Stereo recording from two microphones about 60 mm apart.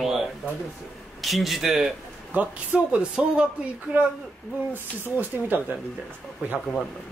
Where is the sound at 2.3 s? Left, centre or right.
Right.